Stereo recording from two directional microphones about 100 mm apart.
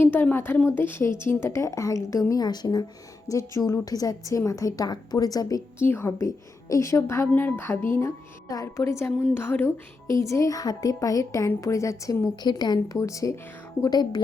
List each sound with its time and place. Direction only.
0.0 s a woman's voice: 20° left (ahead or behind); by 5.6 s 40° left (ahead or behind)
5.8 s a woman's voice: 25° left (ahead or behind)
8.4 s a woman's voice: 35° left (ahead or behind); by 9.7 s 20° left (ahead or behind)
10.1 s a woman's voice: 30° left (ahead or behind)
13.8 s a woman's voice: 45° left (ahead or behind)